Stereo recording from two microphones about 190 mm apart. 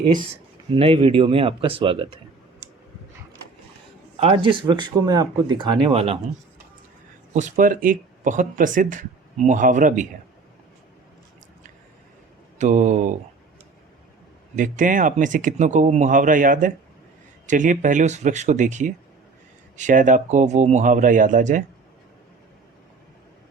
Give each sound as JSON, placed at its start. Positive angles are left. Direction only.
{"t": 0.7, "sound": "speech", "side_deg": -30}
{"t": 4.2, "sound": "speech", "side_deg": -30}
{"t": 7.3, "sound": "speech", "side_deg": -40}
{"t": 12.5, "sound": "speech", "side_deg": -40}
{"t": 14.5, "sound": "speech", "side_deg": -40}